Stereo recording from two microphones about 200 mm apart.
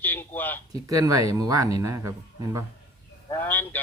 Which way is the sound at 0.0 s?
10° left (ahead or behind).